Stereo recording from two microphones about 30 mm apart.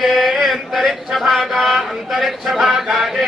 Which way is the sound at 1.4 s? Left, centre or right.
Centre.